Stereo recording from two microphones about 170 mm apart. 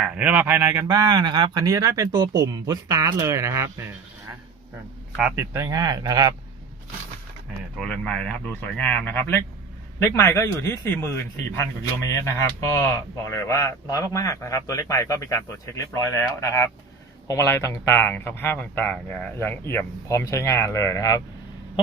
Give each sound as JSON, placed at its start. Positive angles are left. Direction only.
{"t": 0.0, "sound": "speech", "side_deg": -5}
{"t": 0.9, "sound": "speech", "side_deg": -25}
{"t": 5.1, "sound": "speech", "side_deg": -5}
{"t": 5.5, "sound": "speech", "side_deg": -20}
{"t": 7.8, "sound": "speech", "side_deg": 5}